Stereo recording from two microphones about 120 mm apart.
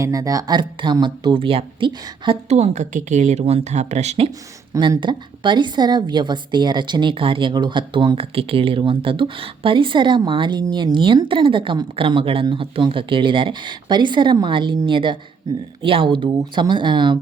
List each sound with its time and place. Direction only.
0.0 s speech: 30° right (ahead or behind); by 2.4 s 45° right (ahead or behind)
2.5 s speech: 70° right (ahead or behind)
4.8 s a woman's voice: 40° right (ahead or behind)